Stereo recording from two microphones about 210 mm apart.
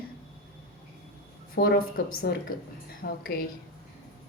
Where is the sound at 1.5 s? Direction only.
45° left (ahead or behind).